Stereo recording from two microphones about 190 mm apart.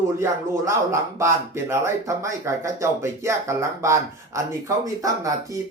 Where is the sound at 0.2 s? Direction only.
15° right (ahead or behind).